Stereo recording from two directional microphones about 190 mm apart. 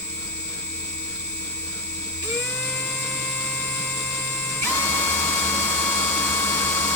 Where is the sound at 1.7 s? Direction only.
10° left (ahead or behind).